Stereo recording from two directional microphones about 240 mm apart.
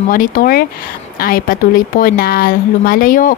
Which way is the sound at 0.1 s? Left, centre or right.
Left.